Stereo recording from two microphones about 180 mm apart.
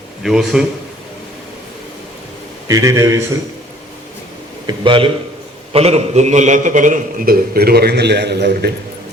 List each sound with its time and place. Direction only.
0.2 s a man's voice: centre (ahead or behind)
2.6 s a man's voice: 15° right (ahead or behind)
4.6 s a man's voice: 25° right (ahead or behind); by 8.7 s 65° right (ahead or behind)